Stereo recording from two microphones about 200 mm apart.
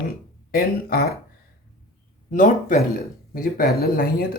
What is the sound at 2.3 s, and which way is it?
Speech, 40° left (ahead or behind).